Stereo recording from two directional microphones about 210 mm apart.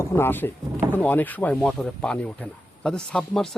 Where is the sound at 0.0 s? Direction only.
10° left (ahead or behind).